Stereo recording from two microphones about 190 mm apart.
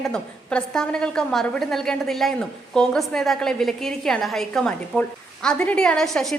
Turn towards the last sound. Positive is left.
turn(degrees=0)  # may be behind; listen again after turning